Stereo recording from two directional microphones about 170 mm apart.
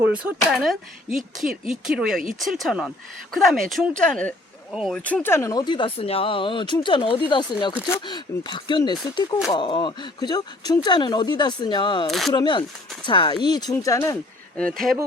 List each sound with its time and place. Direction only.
0.0 s speech: 10° right (ahead or behind)
5.0 s speech: 10° left (ahead or behind); by 12.0 s 25° left (ahead or behind)
12.0 s speech: centre (ahead or behind)
12.3 s speech: 25° left (ahead or behind)
14.5 s speech: 5° left (ahead or behind)